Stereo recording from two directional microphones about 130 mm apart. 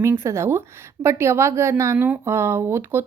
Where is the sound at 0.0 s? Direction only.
20° right (ahead or behind).